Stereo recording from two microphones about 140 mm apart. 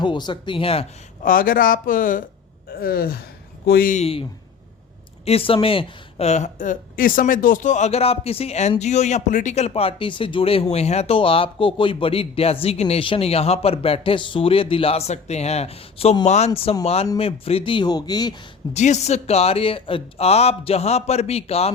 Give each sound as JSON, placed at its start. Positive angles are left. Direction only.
{"t": 0.0, "sound": "speech", "side_deg": 35}
{"t": 1.2, "sound": "speech", "side_deg": 80}
{"t": 2.8, "sound": "gasp", "side_deg": 90}
{"t": 3.7, "sound": "speech", "side_deg": 85}
{"t": 4.0, "sound": "speech", "side_deg": 40}
{"t": 18.7, "sound": "speech", "side_deg": 55}